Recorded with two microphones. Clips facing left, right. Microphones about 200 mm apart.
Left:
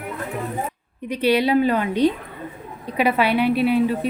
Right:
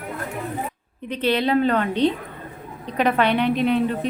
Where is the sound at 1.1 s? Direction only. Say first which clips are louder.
Left 2 dB; 10° left (ahead or behind).